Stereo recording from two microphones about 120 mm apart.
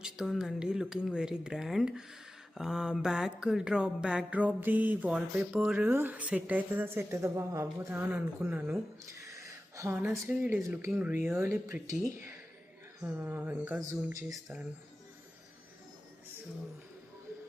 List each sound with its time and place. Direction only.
0.0 s speech: 5° right (ahead or behind)
2.6 s mantra: 5° right (ahead or behind)
9.3 s speech: 25° right (ahead or behind)
13.1 s mantra: 15° right (ahead or behind)
13.9 s speech: 25° right (ahead or behind)